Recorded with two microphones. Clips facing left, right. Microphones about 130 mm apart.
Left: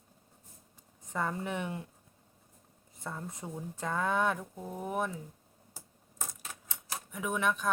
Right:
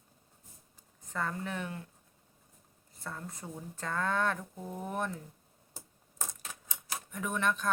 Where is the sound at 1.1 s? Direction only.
15° left (ahead or behind).